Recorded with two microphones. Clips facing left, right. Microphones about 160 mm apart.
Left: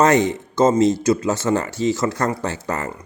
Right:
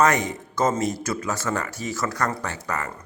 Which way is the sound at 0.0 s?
25° left (ahead or behind).